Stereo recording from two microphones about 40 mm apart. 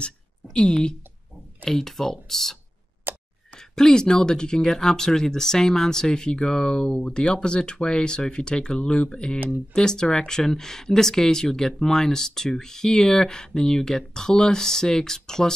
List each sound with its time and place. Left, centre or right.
0.6 s speech: left
1.7 s speech: centre
3.1 s clicking: right
3.7 s speech: centre